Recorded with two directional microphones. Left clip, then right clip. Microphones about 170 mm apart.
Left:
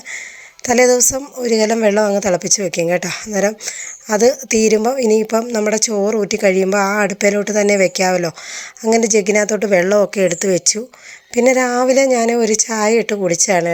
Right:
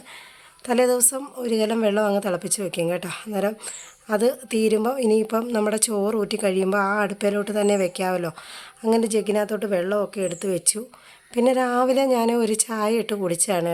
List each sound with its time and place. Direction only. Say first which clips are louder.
0.6 s a woman's voice: left 8 dB; 20° left (ahead or behind)